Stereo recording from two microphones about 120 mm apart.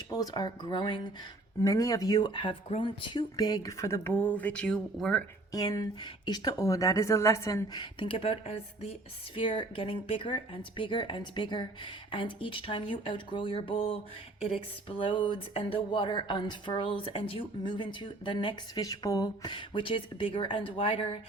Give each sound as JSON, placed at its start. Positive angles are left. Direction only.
{"t": 0.1, "sound": "speech", "side_deg": 30}
{"t": 1.6, "sound": "speech", "side_deg": 30}
{"t": 5.5, "sound": "speech", "side_deg": 30}